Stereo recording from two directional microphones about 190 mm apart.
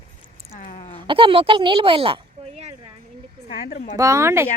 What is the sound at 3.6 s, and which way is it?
Speech, 55° left (ahead or behind).